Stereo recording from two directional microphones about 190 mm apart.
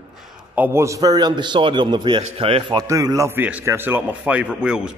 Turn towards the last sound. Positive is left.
turn(degrees=-5)  # may be behind; listen again after turning